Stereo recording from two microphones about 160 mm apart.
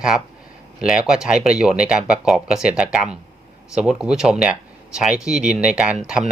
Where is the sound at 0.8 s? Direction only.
5° right (ahead or behind).